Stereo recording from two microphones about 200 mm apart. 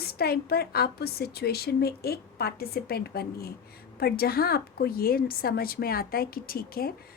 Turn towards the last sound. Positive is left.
turn(degrees=50)  # may be behind; listen again after turning